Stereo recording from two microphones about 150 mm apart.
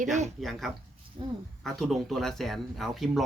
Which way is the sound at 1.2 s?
30° right (ahead or behind).